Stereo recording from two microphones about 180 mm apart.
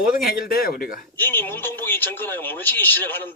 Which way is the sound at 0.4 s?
55° left (ahead or behind).